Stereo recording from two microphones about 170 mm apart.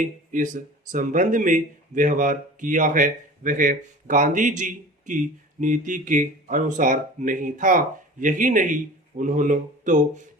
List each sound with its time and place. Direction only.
0.0 s speech: 50° right (ahead or behind)